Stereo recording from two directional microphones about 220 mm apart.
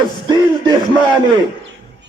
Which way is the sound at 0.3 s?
20° right (ahead or behind).